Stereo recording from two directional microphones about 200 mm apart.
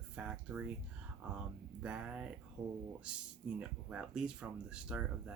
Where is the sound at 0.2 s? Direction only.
5° right (ahead or behind).